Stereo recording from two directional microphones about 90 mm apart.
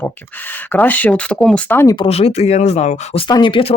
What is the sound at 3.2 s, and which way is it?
Speech, 55° left (ahead or behind).